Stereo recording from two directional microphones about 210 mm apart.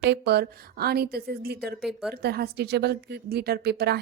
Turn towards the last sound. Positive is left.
turn(degrees=-50)  # may be behind; listen again after turning